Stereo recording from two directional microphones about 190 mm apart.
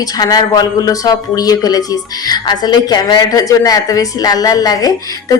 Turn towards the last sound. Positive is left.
turn(degrees=20)  # may be behind; listen again after turning